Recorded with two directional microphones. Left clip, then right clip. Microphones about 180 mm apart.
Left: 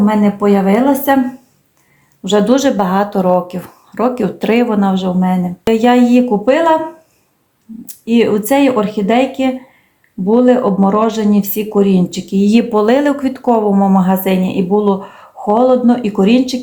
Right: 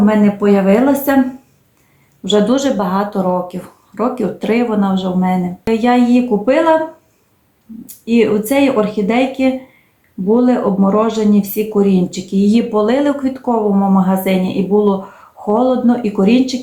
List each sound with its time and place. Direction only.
0.0 s speech: 35° left (ahead or behind)
2.2 s speech: 40° left (ahead or behind)
7.9 s speech: 40° left (ahead or behind)